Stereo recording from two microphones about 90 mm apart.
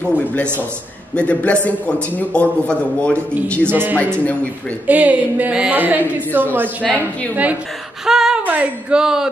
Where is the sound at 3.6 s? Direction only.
25° right (ahead or behind).